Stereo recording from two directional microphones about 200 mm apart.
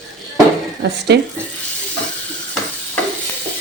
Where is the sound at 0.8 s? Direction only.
55° right (ahead or behind).